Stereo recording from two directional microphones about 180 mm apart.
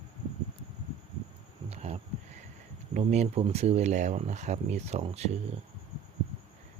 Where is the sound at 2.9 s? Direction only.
40° right (ahead or behind).